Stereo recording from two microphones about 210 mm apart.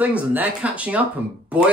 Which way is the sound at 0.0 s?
10° right (ahead or behind).